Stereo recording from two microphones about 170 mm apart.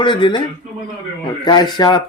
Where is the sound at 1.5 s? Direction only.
25° left (ahead or behind).